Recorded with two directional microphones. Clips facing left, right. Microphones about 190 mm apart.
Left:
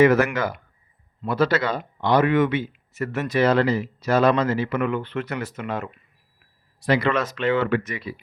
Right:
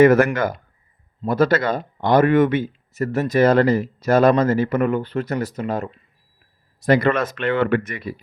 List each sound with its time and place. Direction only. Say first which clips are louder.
0.0 s speech: right 4 dB; 50° right (ahead or behind)
6.8 s speech: right 4 dB; 50° right (ahead or behind)